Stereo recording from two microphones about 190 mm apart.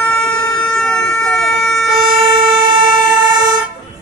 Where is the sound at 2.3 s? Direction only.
25° right (ahead or behind).